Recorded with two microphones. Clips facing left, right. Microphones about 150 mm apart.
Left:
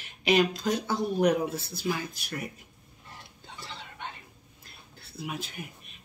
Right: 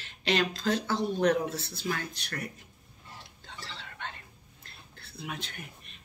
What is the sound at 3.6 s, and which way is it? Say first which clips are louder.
Whispering: left 1 dB; 15° left (ahead or behind).